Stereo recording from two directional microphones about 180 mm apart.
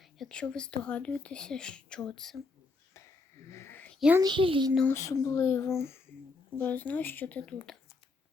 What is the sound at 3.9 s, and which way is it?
Speech, 5° right (ahead or behind).